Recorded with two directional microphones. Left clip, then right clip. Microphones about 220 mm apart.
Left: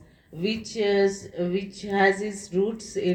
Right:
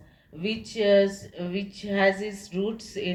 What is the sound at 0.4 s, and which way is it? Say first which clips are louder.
Speech: right 1 dB; 50° left (ahead or behind).